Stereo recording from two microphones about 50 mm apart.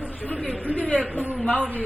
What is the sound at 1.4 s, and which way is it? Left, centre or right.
Speech, left.